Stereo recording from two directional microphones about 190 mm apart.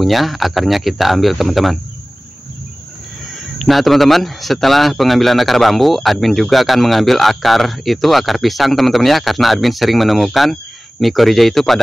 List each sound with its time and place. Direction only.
0.0 s a man's voice: centre (ahead or behind)
3.5 s a man's voice: centre (ahead or behind)